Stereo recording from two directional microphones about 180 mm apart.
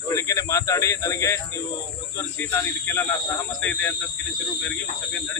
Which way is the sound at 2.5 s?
10° left (ahead or behind).